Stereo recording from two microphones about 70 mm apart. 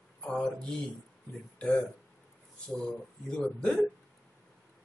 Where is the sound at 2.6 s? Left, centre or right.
Centre.